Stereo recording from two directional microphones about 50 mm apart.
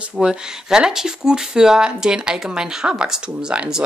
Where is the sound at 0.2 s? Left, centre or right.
Centre.